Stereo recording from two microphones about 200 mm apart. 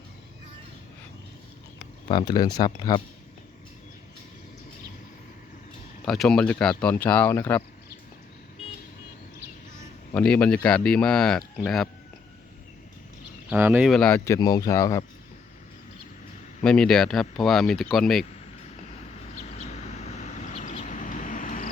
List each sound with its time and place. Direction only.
2.0 s speech: 20° left (ahead or behind)
6.1 s speech: centre (ahead or behind)
10.1 s speech: 5° left (ahead or behind)
13.5 s speech: 10° right (ahead or behind)
14.3 s speech: 20° left (ahead or behind)
16.6 s speech: 5° left (ahead or behind)
20.0 s vehicle: 35° left (ahead or behind)